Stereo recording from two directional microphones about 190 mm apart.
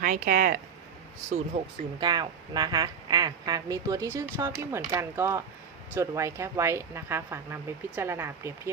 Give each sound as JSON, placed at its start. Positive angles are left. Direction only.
{"t": 0.0, "sound": "speech", "side_deg": -45}
{"t": 1.3, "sound": "a woman's voice", "side_deg": -30}